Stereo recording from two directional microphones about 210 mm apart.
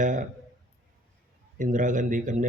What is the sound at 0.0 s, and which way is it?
Speech, 35° right (ahead or behind).